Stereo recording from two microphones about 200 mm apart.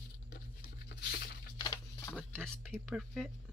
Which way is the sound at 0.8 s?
55° left (ahead or behind).